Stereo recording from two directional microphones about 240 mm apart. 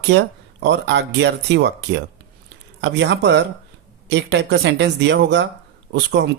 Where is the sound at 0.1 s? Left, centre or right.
Right.